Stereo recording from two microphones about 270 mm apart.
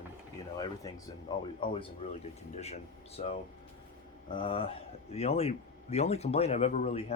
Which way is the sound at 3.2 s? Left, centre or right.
Left.